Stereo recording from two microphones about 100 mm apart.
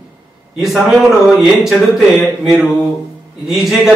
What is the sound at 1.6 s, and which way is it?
A man's voice, 5° right (ahead or behind).